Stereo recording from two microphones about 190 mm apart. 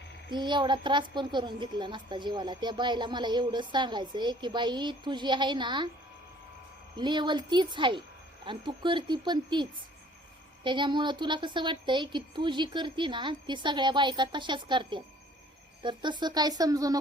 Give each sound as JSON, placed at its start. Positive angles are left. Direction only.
{"t": 0.3, "sound": "a child's voice", "side_deg": -25}
{"t": 6.9, "sound": "a child's voice", "side_deg": -25}